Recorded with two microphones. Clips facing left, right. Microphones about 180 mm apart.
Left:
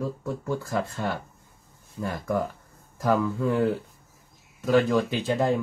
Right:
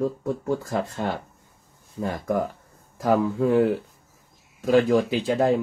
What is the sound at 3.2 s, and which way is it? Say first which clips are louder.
Speech: right 4 dB; 30° right (ahead or behind).